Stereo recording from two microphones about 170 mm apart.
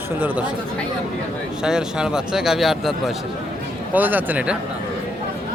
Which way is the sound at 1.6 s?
5° right (ahead or behind).